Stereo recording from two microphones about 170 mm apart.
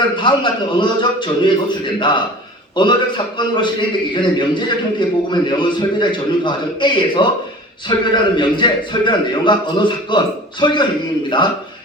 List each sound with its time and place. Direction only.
0.2 s a man's voice: 25° left (ahead or behind)